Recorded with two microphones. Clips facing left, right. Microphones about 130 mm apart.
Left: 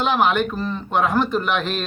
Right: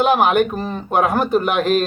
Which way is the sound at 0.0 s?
50° right (ahead or behind).